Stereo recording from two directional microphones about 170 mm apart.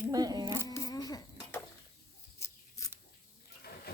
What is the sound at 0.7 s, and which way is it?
Livestock, 20° left (ahead or behind).